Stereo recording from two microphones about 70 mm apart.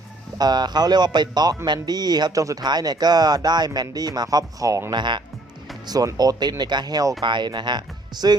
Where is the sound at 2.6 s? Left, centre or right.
Right.